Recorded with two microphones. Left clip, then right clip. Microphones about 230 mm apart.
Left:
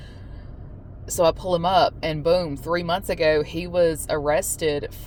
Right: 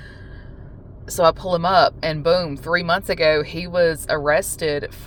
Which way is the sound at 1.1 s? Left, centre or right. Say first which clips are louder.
Right 3 dB; right.